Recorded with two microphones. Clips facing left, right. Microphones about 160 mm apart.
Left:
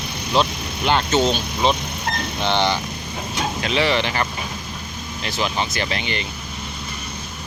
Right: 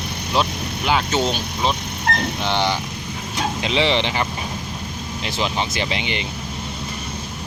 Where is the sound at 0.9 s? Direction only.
5° right (ahead or behind).